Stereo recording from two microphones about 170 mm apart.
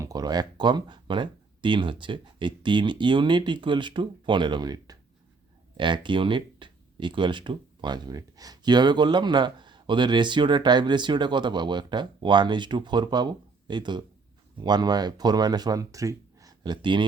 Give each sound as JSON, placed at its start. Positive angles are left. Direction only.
{"t": 0.0, "sound": "speech", "side_deg": -20}